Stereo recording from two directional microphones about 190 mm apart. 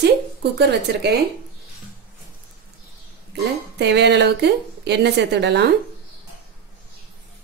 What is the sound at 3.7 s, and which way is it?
A woman's voice, 65° right (ahead or behind).